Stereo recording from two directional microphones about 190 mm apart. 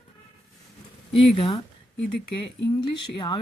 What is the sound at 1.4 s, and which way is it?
Speech, 30° left (ahead or behind).